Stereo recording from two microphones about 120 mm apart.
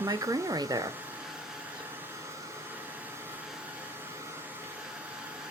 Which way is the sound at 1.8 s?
15° right (ahead or behind).